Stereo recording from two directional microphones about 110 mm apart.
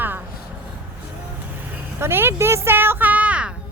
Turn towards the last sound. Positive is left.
turn(degrees=-10)  # may be behind; listen again after turning